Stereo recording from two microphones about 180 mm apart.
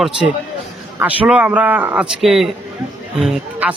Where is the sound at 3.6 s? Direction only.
10° right (ahead or behind).